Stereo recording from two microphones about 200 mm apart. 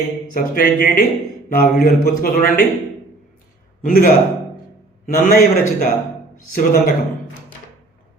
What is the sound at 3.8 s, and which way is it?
A man's voice, 45° left (ahead or behind).